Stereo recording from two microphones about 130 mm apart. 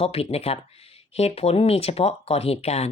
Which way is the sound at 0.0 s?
50° left (ahead or behind).